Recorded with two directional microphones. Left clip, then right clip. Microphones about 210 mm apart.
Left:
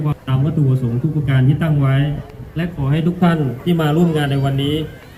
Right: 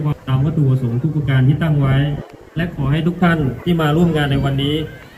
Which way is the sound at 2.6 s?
50° left (ahead or behind).